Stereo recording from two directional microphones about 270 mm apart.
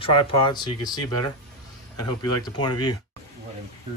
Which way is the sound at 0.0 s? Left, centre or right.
Centre.